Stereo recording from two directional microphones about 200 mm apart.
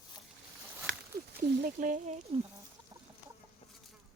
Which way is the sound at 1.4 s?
45° right (ahead or behind).